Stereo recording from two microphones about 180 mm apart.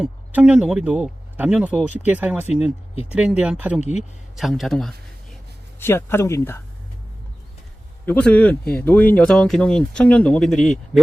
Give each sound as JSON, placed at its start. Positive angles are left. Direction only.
{"t": 0.0, "sound": "speech", "side_deg": -5}
{"t": 3.8, "sound": "speech", "side_deg": 40}
{"t": 4.4, "sound": "speech", "side_deg": 0}
{"t": 5.8, "sound": "speech", "side_deg": 15}
{"t": 8.0, "sound": "speech", "side_deg": 10}